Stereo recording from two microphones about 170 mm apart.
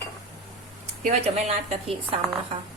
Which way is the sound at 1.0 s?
40° right (ahead or behind).